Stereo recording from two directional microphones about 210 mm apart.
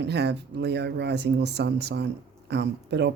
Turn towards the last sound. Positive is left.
turn(degrees=-55)  # may be behind; listen again after turning